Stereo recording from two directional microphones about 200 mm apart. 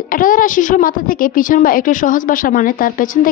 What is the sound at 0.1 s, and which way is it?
A woman's voice, 45° left (ahead or behind).